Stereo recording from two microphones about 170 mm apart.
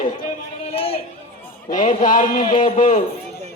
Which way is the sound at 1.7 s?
50° left (ahead or behind).